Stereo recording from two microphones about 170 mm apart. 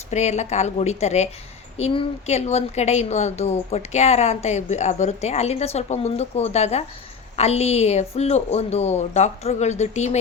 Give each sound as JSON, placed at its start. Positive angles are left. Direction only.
{"t": 0.1, "sound": "a woman's voice", "side_deg": 40}